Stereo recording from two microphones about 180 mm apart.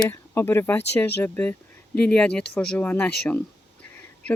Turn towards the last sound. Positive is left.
turn(degrees=5)  # may be behind; listen again after turning